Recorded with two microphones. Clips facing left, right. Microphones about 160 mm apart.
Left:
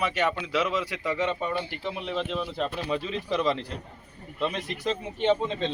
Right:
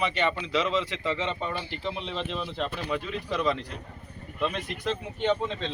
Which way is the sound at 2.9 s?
25° left (ahead or behind).